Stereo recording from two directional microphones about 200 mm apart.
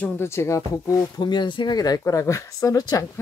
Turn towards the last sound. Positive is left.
turn(degrees=20)  # may be behind; listen again after turning